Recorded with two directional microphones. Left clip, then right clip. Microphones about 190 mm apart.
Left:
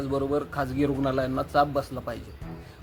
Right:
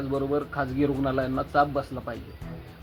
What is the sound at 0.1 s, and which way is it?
Speech, 20° left (ahead or behind).